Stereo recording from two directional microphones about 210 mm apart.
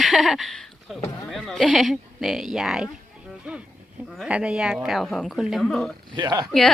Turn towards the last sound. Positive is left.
turn(degrees=0)  # may be behind; listen again after turning